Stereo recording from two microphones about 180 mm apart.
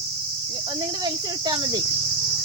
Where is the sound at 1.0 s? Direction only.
20° right (ahead or behind).